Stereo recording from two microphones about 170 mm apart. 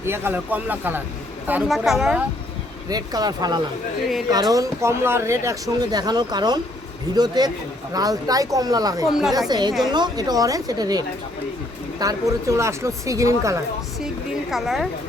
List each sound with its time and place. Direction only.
0.0 s speech: 15° right (ahead or behind)
2.9 s speech: 25° right (ahead or behind)
14.5 s speech: centre (ahead or behind)